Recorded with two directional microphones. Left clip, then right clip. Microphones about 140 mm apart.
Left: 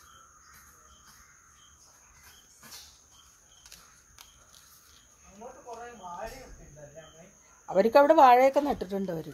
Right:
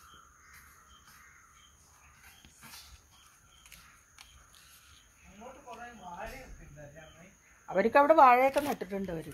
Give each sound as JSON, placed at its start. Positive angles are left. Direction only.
{"t": 7.6, "sound": "speech", "side_deg": 15}